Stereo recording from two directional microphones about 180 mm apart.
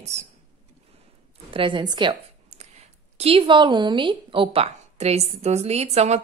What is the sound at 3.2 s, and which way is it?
Speech, 30° right (ahead or behind).